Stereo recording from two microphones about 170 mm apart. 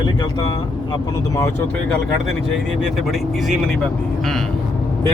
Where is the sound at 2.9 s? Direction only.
Centre (ahead or behind).